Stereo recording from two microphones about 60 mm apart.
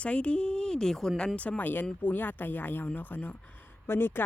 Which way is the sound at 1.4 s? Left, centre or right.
Left.